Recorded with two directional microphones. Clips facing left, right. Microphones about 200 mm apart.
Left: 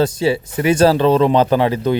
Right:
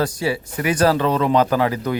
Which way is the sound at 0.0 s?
25° left (ahead or behind).